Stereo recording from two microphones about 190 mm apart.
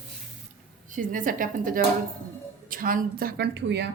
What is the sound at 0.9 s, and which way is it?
A woman's voice, 45° right (ahead or behind).